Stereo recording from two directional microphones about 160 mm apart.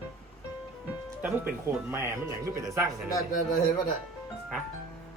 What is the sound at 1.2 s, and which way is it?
Speech, 10° right (ahead or behind).